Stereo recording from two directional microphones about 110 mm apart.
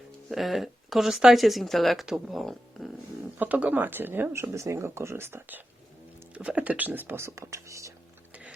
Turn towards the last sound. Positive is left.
turn(degrees=-30)  # may be behind; listen again after turning